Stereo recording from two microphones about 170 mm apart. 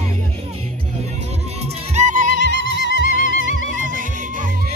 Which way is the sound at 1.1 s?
40° right (ahead or behind).